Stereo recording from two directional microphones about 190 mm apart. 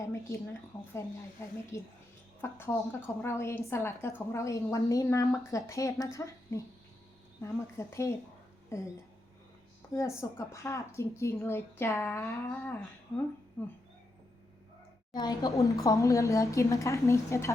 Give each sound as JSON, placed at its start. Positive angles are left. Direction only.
{"t": 0.0, "sound": "a woman's voice", "side_deg": 15}
{"t": 1.7, "sound": "a woman's voice", "side_deg": 15}
{"t": 9.9, "sound": "a woman's voice", "side_deg": 15}
{"t": 15.1, "sound": "a woman's voice", "side_deg": 20}